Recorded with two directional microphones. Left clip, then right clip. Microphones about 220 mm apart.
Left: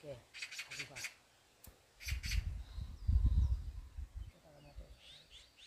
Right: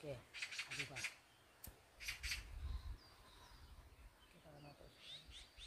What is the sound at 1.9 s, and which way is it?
Bird, 35° left (ahead or behind).